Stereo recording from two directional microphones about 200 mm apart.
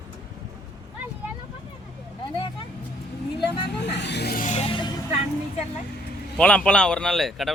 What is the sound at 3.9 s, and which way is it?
Vehicle, 60° left (ahead or behind).